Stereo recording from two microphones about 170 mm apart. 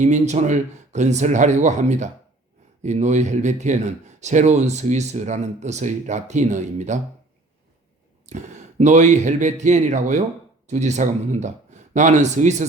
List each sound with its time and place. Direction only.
0.0 s speech: 45° right (ahead or behind)
8.3 s speech: 45° right (ahead or behind)